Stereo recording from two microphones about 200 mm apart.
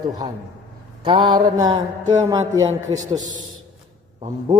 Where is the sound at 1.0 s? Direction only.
25° right (ahead or behind).